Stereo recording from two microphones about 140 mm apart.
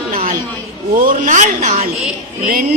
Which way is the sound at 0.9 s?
70° right (ahead or behind).